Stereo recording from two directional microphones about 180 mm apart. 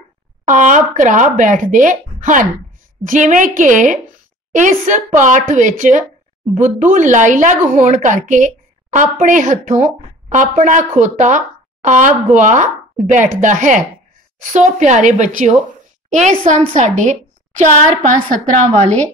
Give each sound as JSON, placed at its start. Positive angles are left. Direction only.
{"t": 0.5, "sound": "a woman's voice", "side_deg": -45}